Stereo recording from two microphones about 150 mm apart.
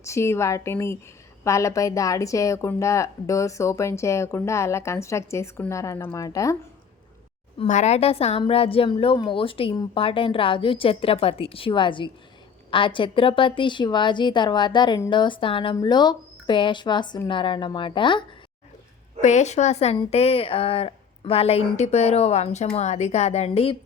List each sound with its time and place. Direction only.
0.0 s a woman's voice: 20° left (ahead or behind)
7.7 s a woman's voice: 50° left (ahead or behind); by 18.2 s 35° left (ahead or behind)
19.2 s speech: 50° left (ahead or behind)